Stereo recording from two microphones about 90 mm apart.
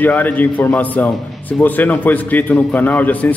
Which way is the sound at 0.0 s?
20° left (ahead or behind).